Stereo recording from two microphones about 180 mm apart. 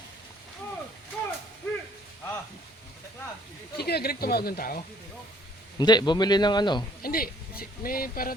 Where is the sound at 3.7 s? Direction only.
60° left (ahead or behind).